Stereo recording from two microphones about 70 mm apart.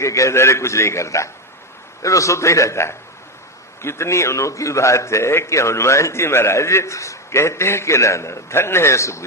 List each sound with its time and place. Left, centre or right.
0.0 s a man's voice: left